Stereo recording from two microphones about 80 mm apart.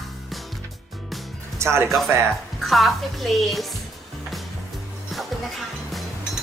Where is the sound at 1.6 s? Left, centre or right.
Right.